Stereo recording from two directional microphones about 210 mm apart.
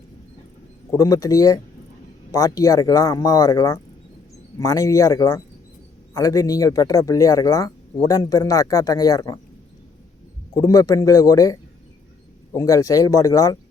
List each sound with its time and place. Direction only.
0.9 s speech: 15° left (ahead or behind)
10.5 s speech: 15° left (ahead or behind)